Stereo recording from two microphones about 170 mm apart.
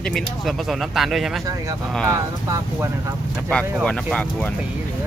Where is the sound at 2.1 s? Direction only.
15° right (ahead or behind).